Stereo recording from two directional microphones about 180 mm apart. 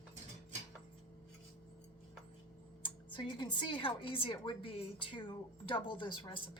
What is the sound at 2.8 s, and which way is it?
Speech, 25° left (ahead or behind).